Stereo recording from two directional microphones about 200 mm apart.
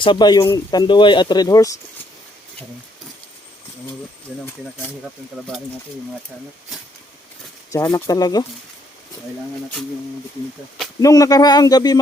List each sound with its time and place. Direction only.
0.0 s speech: 25° left (ahead or behind)
7.7 s speech: 15° left (ahead or behind)
11.0 s speech: 15° left (ahead or behind)